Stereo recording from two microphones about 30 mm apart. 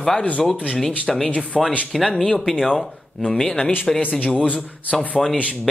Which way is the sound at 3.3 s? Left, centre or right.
Centre.